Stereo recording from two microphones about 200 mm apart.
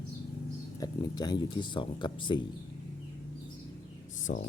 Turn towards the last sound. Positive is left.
turn(degrees=55)  # may be behind; listen again after turning